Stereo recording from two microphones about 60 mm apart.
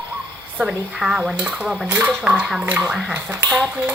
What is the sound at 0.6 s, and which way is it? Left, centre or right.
Speech, centre.